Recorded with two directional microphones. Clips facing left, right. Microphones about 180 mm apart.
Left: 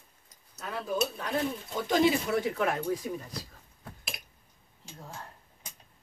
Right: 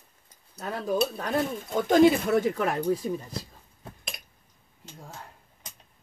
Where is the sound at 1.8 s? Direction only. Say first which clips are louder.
Right 6 dB; 50° right (ahead or behind).